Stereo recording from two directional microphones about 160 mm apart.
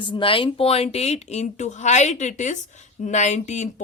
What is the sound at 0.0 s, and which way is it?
Speech, 30° left (ahead or behind).